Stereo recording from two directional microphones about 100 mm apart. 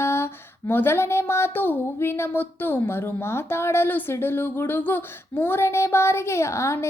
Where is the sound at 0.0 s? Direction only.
25° left (ahead or behind).